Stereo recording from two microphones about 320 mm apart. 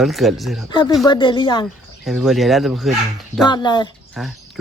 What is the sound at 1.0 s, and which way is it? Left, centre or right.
Speech, centre.